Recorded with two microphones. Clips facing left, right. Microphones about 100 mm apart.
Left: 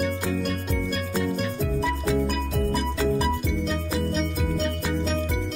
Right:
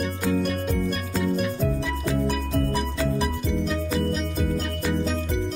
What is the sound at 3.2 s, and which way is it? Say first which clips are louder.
Music: even; centre (ahead or behind).